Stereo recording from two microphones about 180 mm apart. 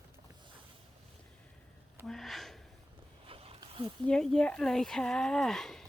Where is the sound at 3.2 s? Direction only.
30° right (ahead or behind).